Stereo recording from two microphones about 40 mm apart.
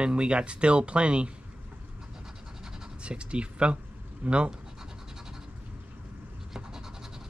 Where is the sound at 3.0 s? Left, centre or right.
Right.